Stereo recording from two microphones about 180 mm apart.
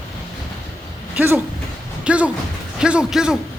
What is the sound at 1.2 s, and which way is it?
A man's voice, 10° right (ahead or behind).